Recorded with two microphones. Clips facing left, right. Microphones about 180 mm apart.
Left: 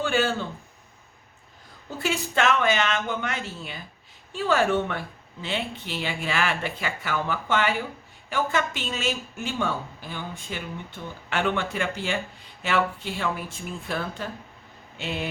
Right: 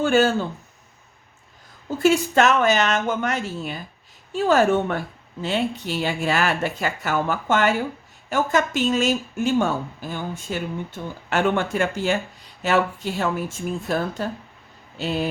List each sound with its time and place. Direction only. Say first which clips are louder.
0.0 s speech: right 6 dB; 45° right (ahead or behind)
2.0 s speech: right 8 dB; 40° right (ahead or behind)